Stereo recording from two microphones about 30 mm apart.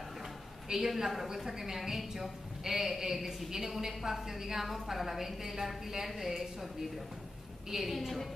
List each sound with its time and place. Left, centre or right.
0.7 s a woman's voice: centre
7.7 s a woman's voice: centre